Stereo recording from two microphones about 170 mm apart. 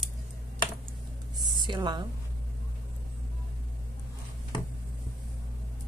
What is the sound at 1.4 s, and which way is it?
Speech, 25° right (ahead or behind).